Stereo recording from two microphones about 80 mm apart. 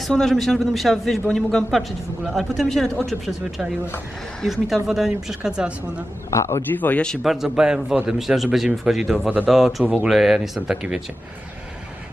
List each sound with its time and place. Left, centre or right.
0.1 s a man's voice: centre
6.3 s a man's voice: left
6.7 s speech: left
7.2 s a man's voice: centre
9.8 s a man's voice: centre
10.1 s a man's voice: centre